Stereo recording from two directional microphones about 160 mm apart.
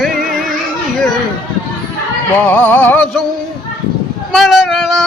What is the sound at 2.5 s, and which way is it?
Music, 10° left (ahead or behind).